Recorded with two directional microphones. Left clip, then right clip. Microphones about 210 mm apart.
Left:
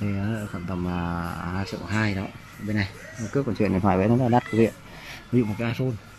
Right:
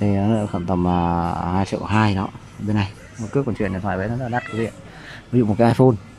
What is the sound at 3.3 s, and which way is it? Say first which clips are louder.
Speech: right 2 dB; 5° right (ahead or behind).